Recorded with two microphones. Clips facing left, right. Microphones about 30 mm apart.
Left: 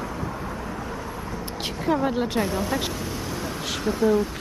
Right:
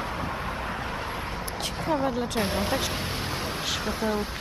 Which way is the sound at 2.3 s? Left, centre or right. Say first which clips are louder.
Left 2 dB; right.